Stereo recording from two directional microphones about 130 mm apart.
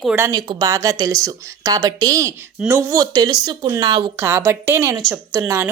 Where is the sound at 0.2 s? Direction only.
30° right (ahead or behind).